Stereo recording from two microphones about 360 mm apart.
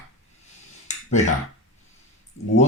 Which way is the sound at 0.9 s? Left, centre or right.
Centre.